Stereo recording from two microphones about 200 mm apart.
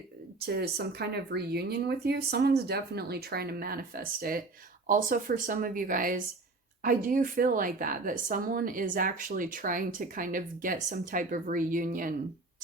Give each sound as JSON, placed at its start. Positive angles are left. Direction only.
{"t": 0.4, "sound": "speech", "side_deg": -55}